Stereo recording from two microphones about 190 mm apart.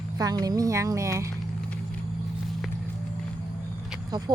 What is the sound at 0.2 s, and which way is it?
Speech, 20° right (ahead or behind).